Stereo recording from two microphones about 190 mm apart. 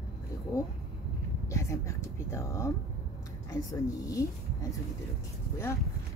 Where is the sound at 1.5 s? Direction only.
15° left (ahead or behind).